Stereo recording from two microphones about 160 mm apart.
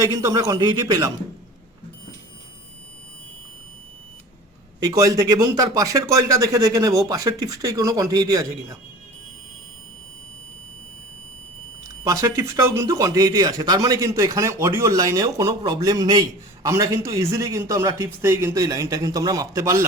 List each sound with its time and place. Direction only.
0.0 s speech: 20° right (ahead or behind)
4.8 s speech: 25° right (ahead or behind)
12.0 s speech: 20° right (ahead or behind)